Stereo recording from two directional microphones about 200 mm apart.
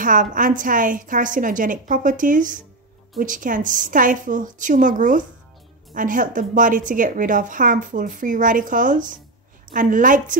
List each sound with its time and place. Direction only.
0.0 s a woman's voice: 40° right (ahead or behind)